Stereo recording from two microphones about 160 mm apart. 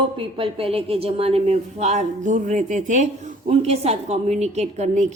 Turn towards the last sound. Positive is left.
turn(degrees=-45)  # may be behind; listen again after turning